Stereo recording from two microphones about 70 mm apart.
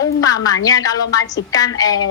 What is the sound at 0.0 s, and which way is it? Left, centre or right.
Speech, left.